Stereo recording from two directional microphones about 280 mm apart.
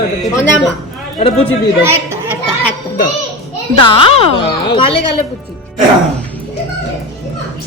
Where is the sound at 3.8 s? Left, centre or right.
Centre.